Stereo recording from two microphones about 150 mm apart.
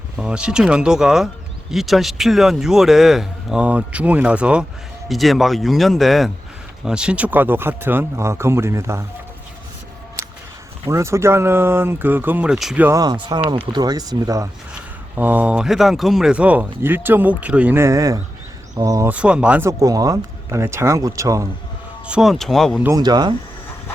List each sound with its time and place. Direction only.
0.2 s speech: 5° right (ahead or behind)
10.8 s speech: 20° right (ahead or behind)
12.8 s speech: 25° right (ahead or behind)
14.7 s speech: 10° right (ahead or behind)
19.1 s speech: 5° right (ahead or behind)
22.0 s speech: 5° right (ahead or behind)
23.0 s speech: 30° right (ahead or behind)